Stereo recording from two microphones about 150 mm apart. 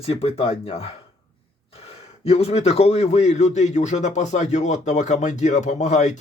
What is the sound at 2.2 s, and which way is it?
A man's voice, 40° left (ahead or behind).